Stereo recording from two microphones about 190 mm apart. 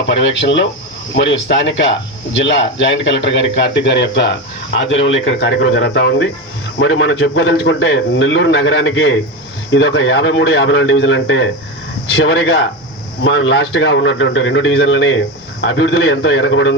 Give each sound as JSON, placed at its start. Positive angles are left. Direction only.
{"t": 0.1, "sound": "speech", "side_deg": 70}
{"t": 13.2, "sound": "speech", "side_deg": 80}